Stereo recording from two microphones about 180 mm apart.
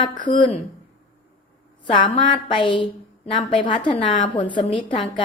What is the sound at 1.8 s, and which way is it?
A woman's voice, 30° left (ahead or behind).